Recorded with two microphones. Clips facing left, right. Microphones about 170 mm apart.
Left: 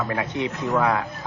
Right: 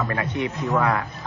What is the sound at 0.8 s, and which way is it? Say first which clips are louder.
Speech: left 1 dB; 5° left (ahead or behind).